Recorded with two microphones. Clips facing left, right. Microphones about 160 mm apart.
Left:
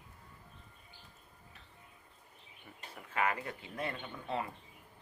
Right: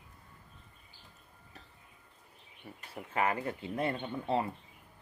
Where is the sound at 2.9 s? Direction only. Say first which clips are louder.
Right 3 dB; 30° right (ahead or behind).